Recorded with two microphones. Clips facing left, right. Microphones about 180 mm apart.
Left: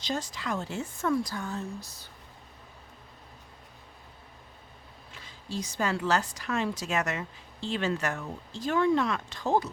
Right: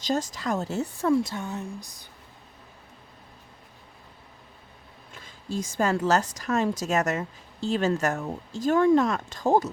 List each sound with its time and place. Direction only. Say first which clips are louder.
0.0 s speech: right 6 dB; 45° right (ahead or behind); by 2.0 s 15° right (ahead or behind)
5.1 s a woman's voice: right 4 dB; 50° right (ahead or behind)